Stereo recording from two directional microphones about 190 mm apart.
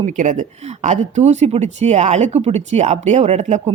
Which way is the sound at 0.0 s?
40° right (ahead or behind).